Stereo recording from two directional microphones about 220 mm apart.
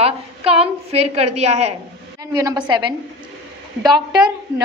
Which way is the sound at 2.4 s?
20° right (ahead or behind).